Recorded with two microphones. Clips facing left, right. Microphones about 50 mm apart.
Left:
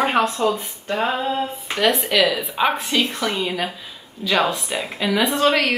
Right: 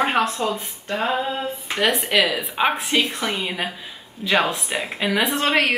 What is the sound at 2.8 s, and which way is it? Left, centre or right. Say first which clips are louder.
Speech: even; right.